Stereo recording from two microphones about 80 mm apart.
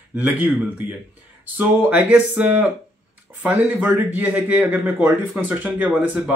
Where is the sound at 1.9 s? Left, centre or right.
Centre.